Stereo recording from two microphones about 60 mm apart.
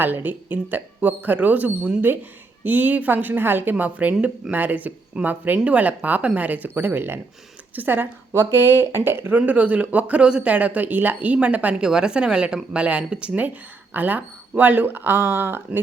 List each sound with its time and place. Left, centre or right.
0.0 s speech: right
9.5 s speech: right
11.8 s speech: centre; by 15.8 s right